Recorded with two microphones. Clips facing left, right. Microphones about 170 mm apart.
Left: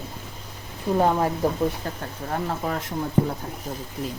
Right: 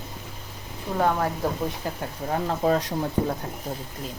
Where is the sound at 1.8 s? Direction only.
10° right (ahead or behind).